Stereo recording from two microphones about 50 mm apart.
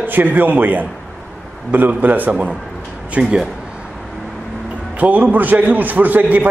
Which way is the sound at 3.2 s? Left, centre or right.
Right.